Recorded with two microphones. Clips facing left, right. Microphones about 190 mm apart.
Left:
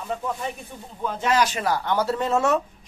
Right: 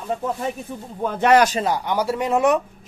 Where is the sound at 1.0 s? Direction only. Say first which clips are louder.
Right 6 dB; 60° right (ahead or behind).